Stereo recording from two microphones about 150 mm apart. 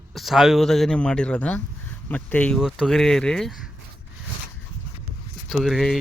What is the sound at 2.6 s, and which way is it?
Speech, 5° right (ahead or behind).